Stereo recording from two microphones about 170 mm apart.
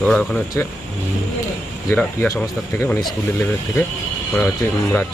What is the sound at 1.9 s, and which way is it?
Speech, 15° left (ahead or behind).